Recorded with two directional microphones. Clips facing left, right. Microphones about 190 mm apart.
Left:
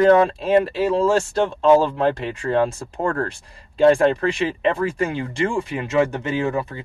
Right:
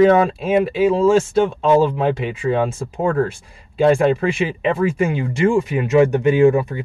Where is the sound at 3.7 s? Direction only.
5° right (ahead or behind).